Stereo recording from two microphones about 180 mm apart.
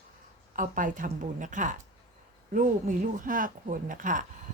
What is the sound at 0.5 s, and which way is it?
A woman's voice, 45° right (ahead or behind).